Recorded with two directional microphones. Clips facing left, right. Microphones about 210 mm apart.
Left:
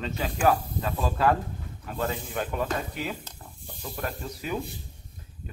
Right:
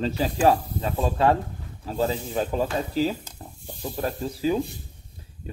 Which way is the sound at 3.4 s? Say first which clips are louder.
Right 5 dB; 30° right (ahead or behind).